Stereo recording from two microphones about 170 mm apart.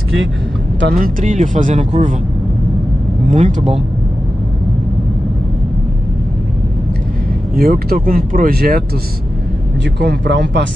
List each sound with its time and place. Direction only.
0.9 s speech: 50° right (ahead or behind)
3.3 s speech: 40° right (ahead or behind)
7.5 s speech: 60° right (ahead or behind)
9.9 s speech: 85° right